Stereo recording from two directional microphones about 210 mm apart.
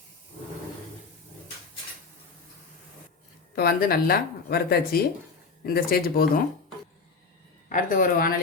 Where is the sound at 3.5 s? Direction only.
45° left (ahead or behind).